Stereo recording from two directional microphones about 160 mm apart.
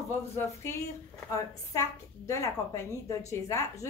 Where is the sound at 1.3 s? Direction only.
20° left (ahead or behind).